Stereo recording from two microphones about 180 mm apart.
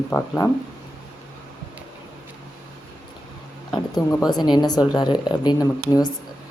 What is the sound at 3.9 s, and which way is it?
Speech, 20° left (ahead or behind).